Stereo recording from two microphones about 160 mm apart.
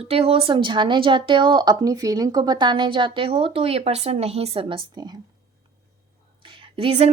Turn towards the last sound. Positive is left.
turn(degrees=-40)  # may be behind; listen again after turning